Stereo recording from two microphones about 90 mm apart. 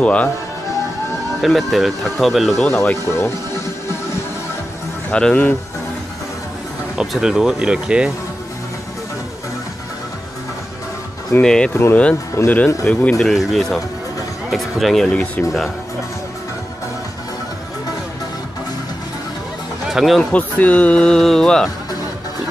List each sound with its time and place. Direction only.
0.0 s speech: 15° left (ahead or behind)
1.4 s speech: centre (ahead or behind)
2.6 s speech: 20° left (ahead or behind)
5.1 s speech: 15° left (ahead or behind)
7.0 s speech: 5° right (ahead or behind)
11.4 s speech: 10° left (ahead or behind)
11.7 s speech: 20° left (ahead or behind)
13.2 s speech: centre (ahead or behind)
19.9 s speech: 5° right (ahead or behind)
20.3 s speech: 15° left (ahead or behind)